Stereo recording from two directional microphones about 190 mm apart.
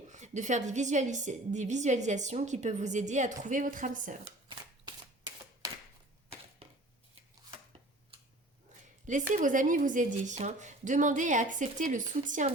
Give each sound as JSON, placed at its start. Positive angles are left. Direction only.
{"t": 0.1, "sound": "a woman's voice", "side_deg": -40}
{"t": 4.4, "sound": "shuffling cards", "side_deg": -25}
{"t": 9.3, "sound": "a woman's voice", "side_deg": -45}